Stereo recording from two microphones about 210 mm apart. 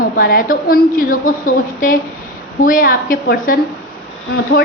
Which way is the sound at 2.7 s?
40° left (ahead or behind).